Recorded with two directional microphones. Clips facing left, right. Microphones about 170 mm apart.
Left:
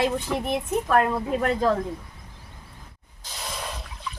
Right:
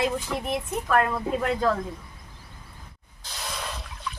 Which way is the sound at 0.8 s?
20° left (ahead or behind).